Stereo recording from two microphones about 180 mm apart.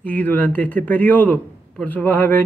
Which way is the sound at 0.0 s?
10° left (ahead or behind).